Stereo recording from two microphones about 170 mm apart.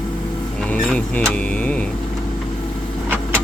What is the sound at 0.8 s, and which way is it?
Speech, 5° left (ahead or behind).